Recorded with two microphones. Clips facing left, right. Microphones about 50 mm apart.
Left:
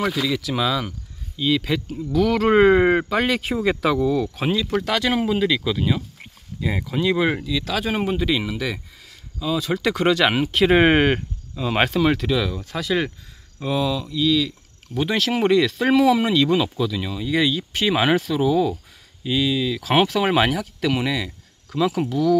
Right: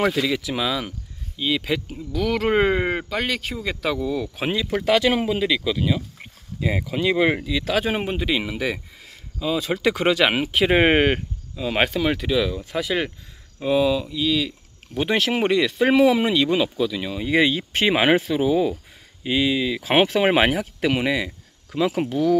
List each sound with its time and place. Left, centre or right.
0.3 s speech: centre
4.5 s speech: centre
17.2 s speech: right